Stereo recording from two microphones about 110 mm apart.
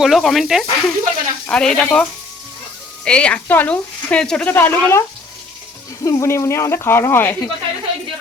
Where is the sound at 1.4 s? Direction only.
10° left (ahead or behind).